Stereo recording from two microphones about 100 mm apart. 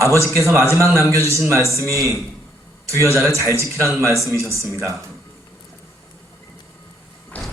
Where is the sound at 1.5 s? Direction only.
30° right (ahead or behind).